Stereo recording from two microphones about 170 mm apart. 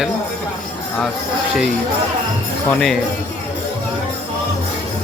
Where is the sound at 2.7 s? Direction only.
Centre (ahead or behind).